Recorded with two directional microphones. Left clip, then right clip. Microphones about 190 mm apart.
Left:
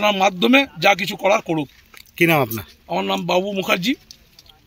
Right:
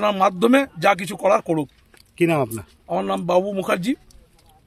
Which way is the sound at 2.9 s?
10° right (ahead or behind).